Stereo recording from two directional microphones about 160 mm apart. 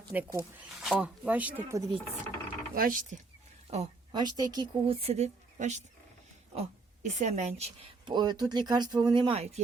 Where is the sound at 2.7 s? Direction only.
60° right (ahead or behind).